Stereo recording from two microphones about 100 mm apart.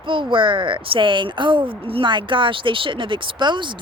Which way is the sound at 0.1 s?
55° right (ahead or behind).